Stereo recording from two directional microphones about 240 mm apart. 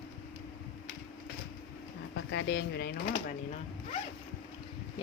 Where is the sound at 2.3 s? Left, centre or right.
Left.